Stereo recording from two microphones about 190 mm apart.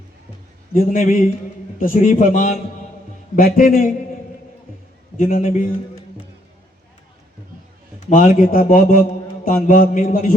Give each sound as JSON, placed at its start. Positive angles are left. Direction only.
{"t": 0.7, "sound": "mantra", "side_deg": 45}
{"t": 1.8, "sound": "a man's voice", "side_deg": 45}
{"t": 3.3, "sound": "mantra", "side_deg": 50}
{"t": 5.1, "sound": "mantra", "side_deg": 40}
{"t": 8.1, "sound": "mantra", "side_deg": 40}